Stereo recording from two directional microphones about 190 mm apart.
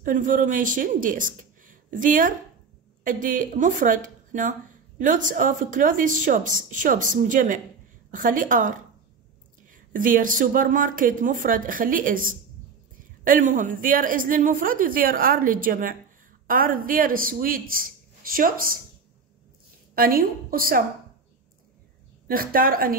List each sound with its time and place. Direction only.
0.0 s speech: 45° right (ahead or behind)
20.0 s speech: 50° right (ahead or behind)
22.3 s speech: 50° right (ahead or behind)